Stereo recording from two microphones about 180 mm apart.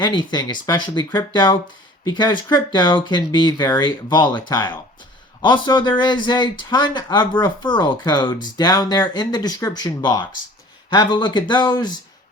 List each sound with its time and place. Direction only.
0.0 s speech: 25° left (ahead or behind)